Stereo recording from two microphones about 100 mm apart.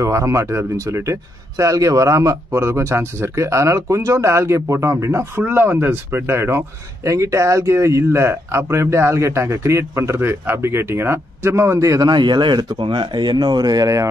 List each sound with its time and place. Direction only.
0.0 s speech: 30° right (ahead or behind)
12.1 s speech: 50° right (ahead or behind)